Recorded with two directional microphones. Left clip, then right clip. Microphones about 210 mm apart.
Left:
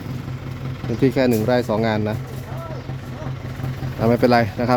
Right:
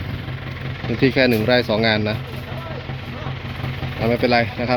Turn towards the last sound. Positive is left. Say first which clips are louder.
# left 1 dB
turn(degrees=20)  # may be behind; listen again after turning